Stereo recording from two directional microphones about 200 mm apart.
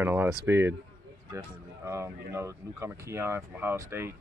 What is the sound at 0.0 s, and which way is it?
Speech, 10° right (ahead or behind).